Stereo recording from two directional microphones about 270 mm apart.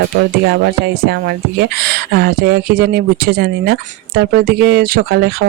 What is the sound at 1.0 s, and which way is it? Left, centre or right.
Speech, right.